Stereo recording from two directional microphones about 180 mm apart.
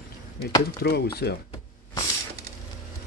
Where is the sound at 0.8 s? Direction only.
60° left (ahead or behind).